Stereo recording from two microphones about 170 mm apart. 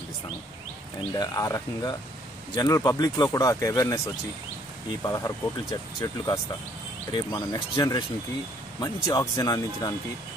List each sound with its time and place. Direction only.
1.1 s speech: 20° left (ahead or behind)
5.0 s speech: 20° left (ahead or behind)